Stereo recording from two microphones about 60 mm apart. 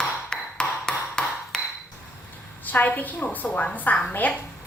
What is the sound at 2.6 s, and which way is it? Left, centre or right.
A woman's voice, left.